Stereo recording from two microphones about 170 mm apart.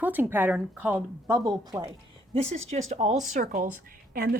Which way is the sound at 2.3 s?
40° right (ahead or behind).